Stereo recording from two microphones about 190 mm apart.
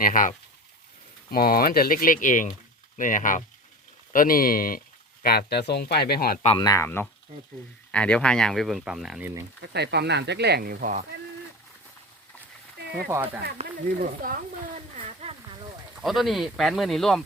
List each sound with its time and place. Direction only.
0.0 s speech: 45° left (ahead or behind)
6.6 s speech: 15° left (ahead or behind)
7.3 s speech: 35° right (ahead or behind)
7.9 s speech: 5° left (ahead or behind)
9.6 s speech: 60° right (ahead or behind)
13.6 s speech: 45° right (ahead or behind)
16.0 s speech: centre (ahead or behind)